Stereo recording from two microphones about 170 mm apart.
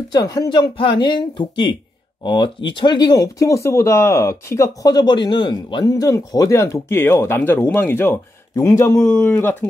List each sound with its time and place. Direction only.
0.1 s speech: 20° left (ahead or behind)